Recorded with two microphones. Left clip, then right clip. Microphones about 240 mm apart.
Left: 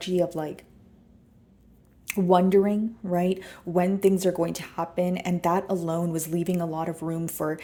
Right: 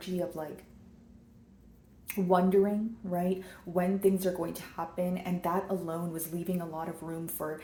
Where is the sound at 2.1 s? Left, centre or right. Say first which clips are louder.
Left 6 dB; left.